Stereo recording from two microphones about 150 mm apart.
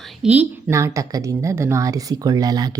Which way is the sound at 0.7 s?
20° right (ahead or behind).